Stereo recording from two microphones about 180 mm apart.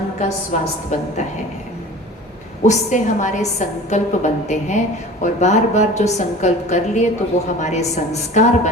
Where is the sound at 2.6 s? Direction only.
40° left (ahead or behind).